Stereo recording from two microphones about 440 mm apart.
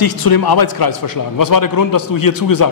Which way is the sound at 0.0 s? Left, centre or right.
Left.